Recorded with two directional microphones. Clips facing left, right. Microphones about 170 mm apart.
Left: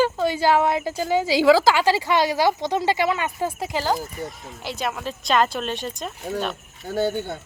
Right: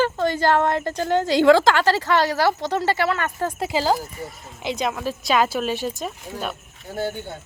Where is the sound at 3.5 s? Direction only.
5° right (ahead or behind).